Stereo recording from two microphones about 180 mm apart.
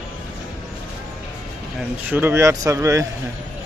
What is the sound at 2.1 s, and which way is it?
Speech, 10° right (ahead or behind).